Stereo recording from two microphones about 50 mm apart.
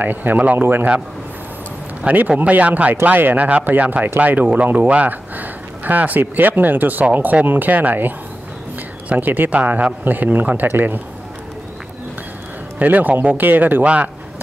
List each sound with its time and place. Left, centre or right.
0.0 s speech: right
2.0 s speech: right
9.2 s speech: right
12.7 s speech: right